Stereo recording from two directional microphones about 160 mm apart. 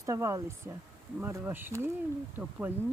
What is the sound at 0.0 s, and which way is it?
Speech, 20° right (ahead or behind).